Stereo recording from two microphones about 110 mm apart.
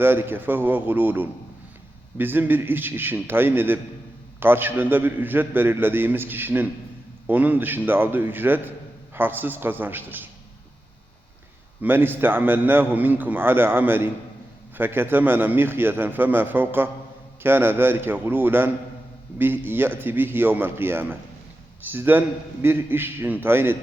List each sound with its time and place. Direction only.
0.0 s a man's voice: 20° right (ahead or behind)
11.8 s a man's voice: 20° right (ahead or behind)